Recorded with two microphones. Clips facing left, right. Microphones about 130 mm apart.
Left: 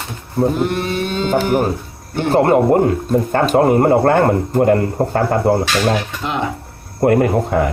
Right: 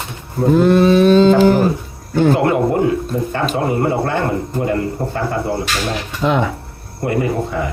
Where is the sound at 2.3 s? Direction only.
45° left (ahead or behind).